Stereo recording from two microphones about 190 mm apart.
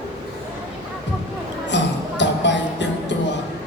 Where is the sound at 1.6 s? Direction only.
70° left (ahead or behind).